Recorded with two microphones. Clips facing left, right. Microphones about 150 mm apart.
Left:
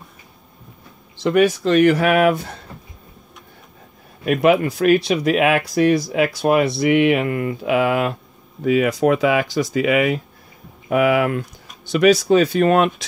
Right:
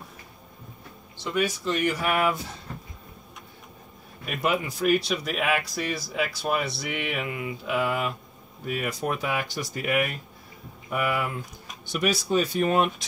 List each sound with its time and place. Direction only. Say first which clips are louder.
1.2 s speech: left 11 dB; 75° left (ahead or behind)
4.3 s speech: left 11 dB; 65° left (ahead or behind)
8.6 s speech: left 13 dB; 90° left